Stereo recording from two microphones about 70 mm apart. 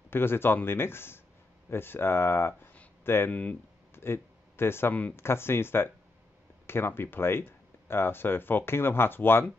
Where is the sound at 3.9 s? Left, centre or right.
Left.